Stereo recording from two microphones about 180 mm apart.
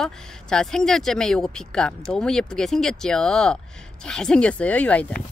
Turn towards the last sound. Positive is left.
turn(degrees=5)  # may be behind; listen again after turning